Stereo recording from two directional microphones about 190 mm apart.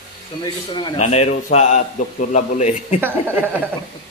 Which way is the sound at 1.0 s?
35° left (ahead or behind).